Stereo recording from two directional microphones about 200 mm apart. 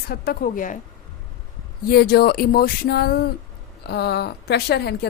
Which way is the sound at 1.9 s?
50° left (ahead or behind).